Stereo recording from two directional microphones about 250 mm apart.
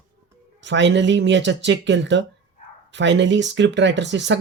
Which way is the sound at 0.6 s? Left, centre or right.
Right.